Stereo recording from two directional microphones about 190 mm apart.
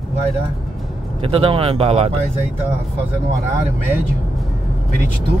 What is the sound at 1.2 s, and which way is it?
Speech, 30° right (ahead or behind).